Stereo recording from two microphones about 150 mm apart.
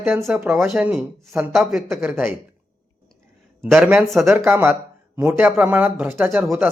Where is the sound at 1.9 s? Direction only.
10° right (ahead or behind).